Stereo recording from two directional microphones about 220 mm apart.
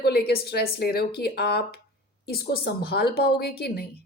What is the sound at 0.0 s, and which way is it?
A woman's voice, 45° left (ahead or behind).